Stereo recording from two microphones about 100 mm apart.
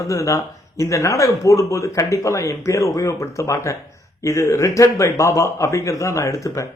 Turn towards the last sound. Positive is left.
turn(degrees=35)  # may be behind; listen again after turning